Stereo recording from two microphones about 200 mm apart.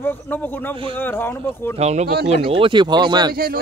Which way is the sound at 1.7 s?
35° right (ahead or behind).